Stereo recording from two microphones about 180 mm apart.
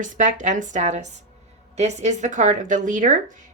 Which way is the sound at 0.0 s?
45° right (ahead or behind).